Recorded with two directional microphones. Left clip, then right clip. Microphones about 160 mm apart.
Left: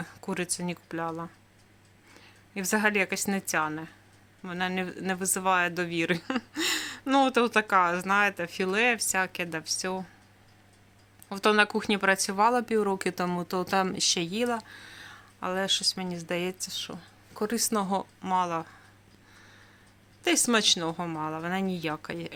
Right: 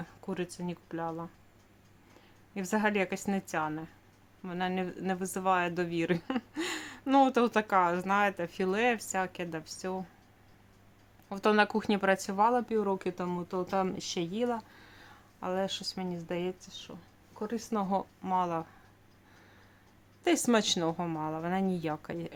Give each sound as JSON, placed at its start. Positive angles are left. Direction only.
{"t": 0.0, "sound": "a woman's voice", "side_deg": 10}
{"t": 11.3, "sound": "speech", "side_deg": 0}
{"t": 12.6, "sound": "speech", "side_deg": 25}
{"t": 16.6, "sound": "speech", "side_deg": 25}
{"t": 17.7, "sound": "speech", "side_deg": 5}
{"t": 20.2, "sound": "speech", "side_deg": -5}